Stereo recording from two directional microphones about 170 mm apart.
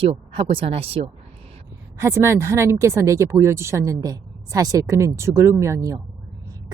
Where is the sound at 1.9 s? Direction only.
15° right (ahead or behind).